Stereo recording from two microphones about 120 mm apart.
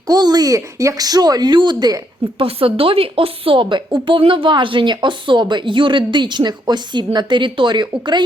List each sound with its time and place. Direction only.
0.1 s speech: 35° right (ahead or behind)
2.4 s a woman's voice: 50° right (ahead or behind)